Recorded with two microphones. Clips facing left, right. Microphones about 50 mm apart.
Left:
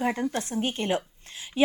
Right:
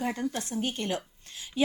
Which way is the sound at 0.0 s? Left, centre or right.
Left.